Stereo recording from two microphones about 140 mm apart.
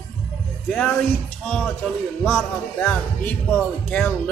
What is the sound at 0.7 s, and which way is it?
A man's voice, 10° left (ahead or behind).